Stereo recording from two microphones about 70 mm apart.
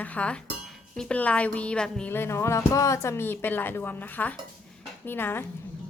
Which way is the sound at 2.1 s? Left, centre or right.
Left.